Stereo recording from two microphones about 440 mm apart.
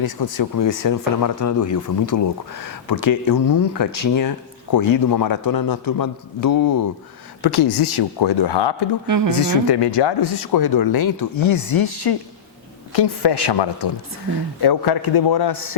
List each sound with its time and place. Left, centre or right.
0.0 s a man's voice: left
9.0 s speech: right
9.3 s a man's voice: left
12.9 s speech: left